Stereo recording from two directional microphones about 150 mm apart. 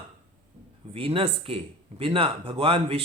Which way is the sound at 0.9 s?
40° right (ahead or behind).